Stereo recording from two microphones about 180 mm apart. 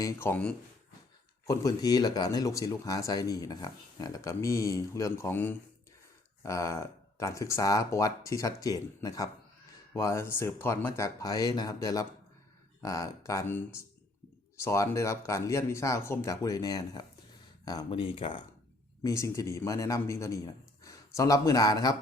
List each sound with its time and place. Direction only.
0.0 s speech: 15° left (ahead or behind)
19.0 s speech: 15° left (ahead or behind)